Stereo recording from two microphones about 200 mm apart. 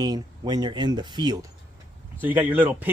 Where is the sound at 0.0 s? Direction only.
20° right (ahead or behind).